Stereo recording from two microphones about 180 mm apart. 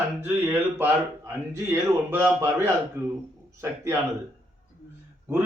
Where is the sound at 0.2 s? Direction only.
10° right (ahead or behind).